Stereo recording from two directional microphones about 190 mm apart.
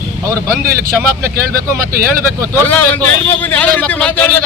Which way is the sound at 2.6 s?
10° left (ahead or behind).